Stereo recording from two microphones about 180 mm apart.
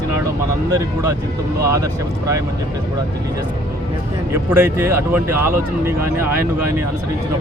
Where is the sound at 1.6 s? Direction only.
15° right (ahead or behind).